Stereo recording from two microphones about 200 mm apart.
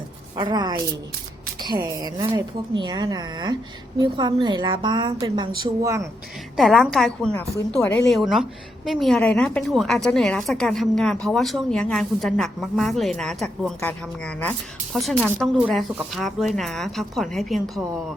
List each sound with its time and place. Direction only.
0.3 s a woman's voice: 20° right (ahead or behind)
6.6 s a woman's voice: centre (ahead or behind)